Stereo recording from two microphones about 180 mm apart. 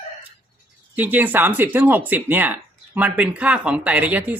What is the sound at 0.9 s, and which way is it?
Speech, 10° right (ahead or behind).